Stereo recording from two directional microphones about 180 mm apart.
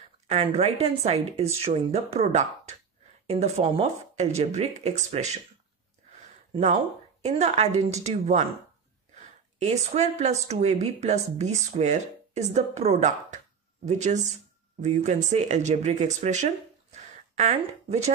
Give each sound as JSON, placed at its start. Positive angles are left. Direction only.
{"t": 0.3, "sound": "speech", "side_deg": -35}
{"t": 6.5, "sound": "speech", "side_deg": -35}
{"t": 9.6, "sound": "speech", "side_deg": -35}
{"t": 16.9, "sound": "a sound", "side_deg": -35}